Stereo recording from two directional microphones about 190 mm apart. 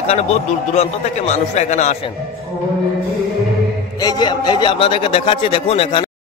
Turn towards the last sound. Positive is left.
turn(degrees=30)  # may be behind; listen again after turning